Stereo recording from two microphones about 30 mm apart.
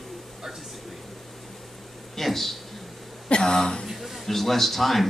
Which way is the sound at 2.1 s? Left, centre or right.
Centre.